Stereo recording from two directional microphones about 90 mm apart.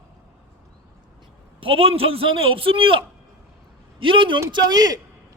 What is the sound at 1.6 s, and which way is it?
A man's voice, 85° right.